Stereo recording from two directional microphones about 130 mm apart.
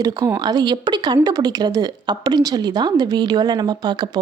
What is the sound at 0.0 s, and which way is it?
A woman's voice, 30° right (ahead or behind).